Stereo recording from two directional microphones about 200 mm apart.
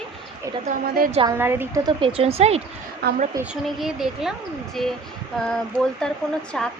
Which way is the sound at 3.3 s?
15° right (ahead or behind).